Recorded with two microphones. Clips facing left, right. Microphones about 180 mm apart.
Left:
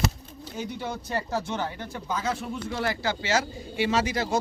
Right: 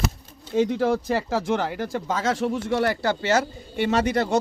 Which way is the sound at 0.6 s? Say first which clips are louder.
Right 12 dB; 90° right.